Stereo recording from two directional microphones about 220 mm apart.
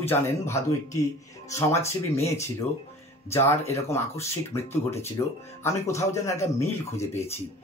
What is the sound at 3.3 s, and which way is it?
Speech, 10° left (ahead or behind).